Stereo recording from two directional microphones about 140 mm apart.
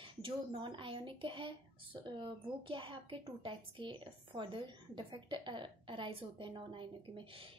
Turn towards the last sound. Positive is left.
turn(degrees=-35)  # may be behind; listen again after turning